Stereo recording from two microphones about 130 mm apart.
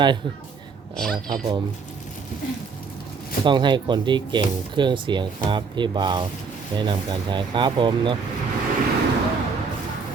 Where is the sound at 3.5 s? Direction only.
35° right (ahead or behind).